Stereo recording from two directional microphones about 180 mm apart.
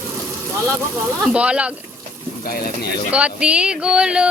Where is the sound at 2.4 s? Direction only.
55° left (ahead or behind).